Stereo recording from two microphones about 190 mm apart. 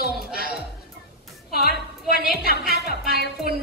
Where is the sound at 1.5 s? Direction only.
55° left (ahead or behind).